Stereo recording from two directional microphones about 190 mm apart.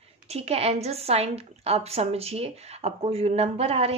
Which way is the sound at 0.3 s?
35° right (ahead or behind).